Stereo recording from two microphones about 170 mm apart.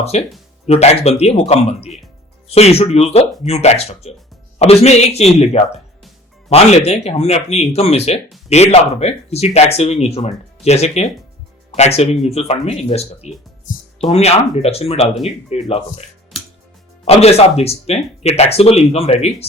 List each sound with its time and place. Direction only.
0.0 s speech: 40° left (ahead or behind)
17.1 s speech: 35° left (ahead or behind)